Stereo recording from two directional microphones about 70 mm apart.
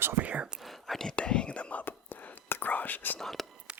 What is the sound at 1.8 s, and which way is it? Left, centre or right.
Whispering, left.